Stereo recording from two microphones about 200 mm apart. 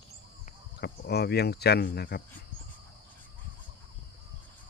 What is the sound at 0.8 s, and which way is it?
Speech, 50° left (ahead or behind).